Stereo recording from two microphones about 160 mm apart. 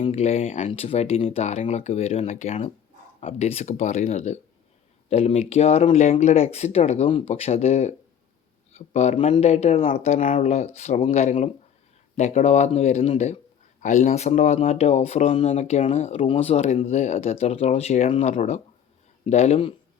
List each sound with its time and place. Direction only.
0.1 s speech: 40° left (ahead or behind)
0.7 s speech: 35° left (ahead or behind)
9.9 s speech: 50° left (ahead or behind)